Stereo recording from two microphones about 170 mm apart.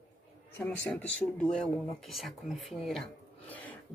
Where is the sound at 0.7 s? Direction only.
10° left (ahead or behind).